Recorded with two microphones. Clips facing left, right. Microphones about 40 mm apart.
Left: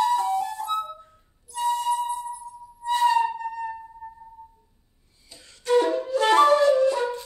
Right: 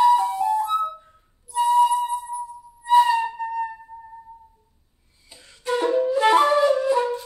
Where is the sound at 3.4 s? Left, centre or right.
Right.